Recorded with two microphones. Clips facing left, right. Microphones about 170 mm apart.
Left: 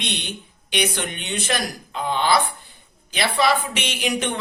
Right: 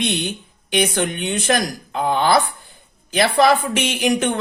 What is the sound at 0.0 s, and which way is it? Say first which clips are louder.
Speech: right 8 dB; 45° right (ahead or behind).